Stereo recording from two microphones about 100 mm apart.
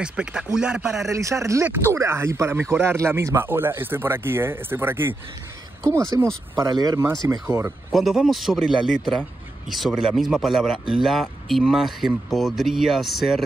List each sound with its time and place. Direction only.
0.0 s a man's voice: 10° right (ahead or behind)
1.1 s speech: 30° right (ahead or behind)
6.7 s speech: 40° right (ahead or behind)
7.2 s speech: 30° right (ahead or behind)
7.9 s speech: centre (ahead or behind)